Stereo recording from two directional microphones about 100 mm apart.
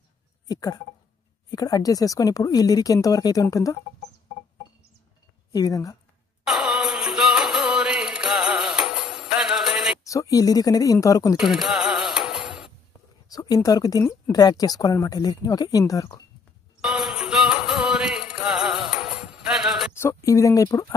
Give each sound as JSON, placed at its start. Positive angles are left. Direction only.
{"t": 0.5, "sound": "speech", "side_deg": 40}
{"t": 5.5, "sound": "speech", "side_deg": 35}
{"t": 6.4, "sound": "music", "side_deg": -5}
{"t": 10.0, "sound": "speech", "side_deg": 35}
{"t": 11.3, "sound": "music", "side_deg": -5}
{"t": 13.3, "sound": "speech", "side_deg": 40}
{"t": 16.8, "sound": "music", "side_deg": -5}
{"t": 19.9, "sound": "speech", "side_deg": 25}